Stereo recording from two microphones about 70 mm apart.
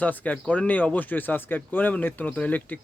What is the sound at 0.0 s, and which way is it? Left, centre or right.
Speech, left.